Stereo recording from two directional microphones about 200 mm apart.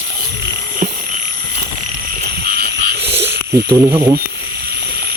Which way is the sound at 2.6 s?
55° right (ahead or behind).